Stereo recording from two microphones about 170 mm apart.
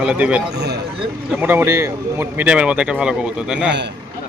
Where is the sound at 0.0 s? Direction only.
5° right (ahead or behind).